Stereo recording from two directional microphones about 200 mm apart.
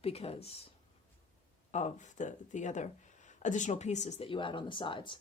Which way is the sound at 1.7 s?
35° left (ahead or behind).